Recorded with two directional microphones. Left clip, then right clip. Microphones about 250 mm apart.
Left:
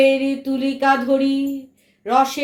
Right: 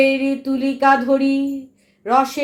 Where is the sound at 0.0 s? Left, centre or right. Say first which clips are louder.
Left 1 dB; centre.